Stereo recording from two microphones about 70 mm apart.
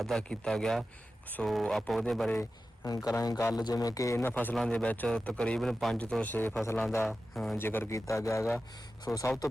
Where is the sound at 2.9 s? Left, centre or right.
Left.